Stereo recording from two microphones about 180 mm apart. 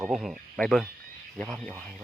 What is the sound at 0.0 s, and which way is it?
Speech, centre (ahead or behind).